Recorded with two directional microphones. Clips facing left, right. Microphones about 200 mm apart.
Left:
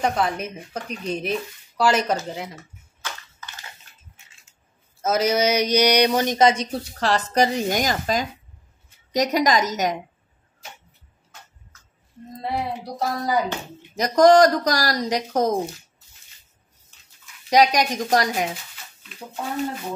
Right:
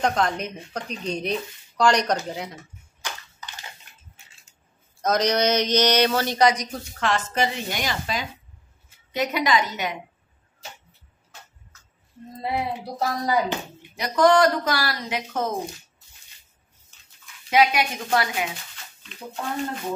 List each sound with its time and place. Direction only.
0.0 s speech: 5° left (ahead or behind)
3.0 s crushing: 15° right (ahead or behind)
5.0 s speech: 5° left (ahead or behind); by 9.9 s 40° left (ahead or behind)
12.4 s speech: centre (ahead or behind)
13.9 s speech: 40° left (ahead or behind)
17.5 s speech: 40° left (ahead or behind)